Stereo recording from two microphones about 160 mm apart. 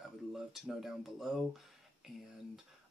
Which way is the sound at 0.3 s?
Centre (ahead or behind).